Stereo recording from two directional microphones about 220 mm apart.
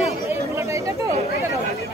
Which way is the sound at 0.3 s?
15° right (ahead or behind).